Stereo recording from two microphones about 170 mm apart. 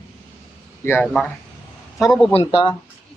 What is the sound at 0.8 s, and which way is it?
Speech, 15° left (ahead or behind).